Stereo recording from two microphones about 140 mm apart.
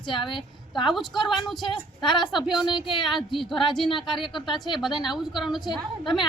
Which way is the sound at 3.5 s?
35° left (ahead or behind).